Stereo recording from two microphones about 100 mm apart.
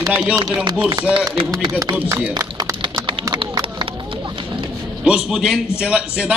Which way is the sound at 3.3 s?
55° right (ahead or behind).